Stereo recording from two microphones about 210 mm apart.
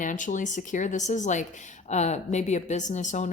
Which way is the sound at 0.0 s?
40° left (ahead or behind).